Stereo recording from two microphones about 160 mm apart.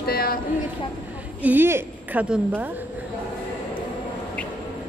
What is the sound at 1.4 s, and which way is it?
A woman's voice, 10° right (ahead or behind).